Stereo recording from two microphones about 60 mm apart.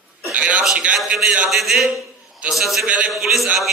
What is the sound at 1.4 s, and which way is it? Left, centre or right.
A man's voice, centre.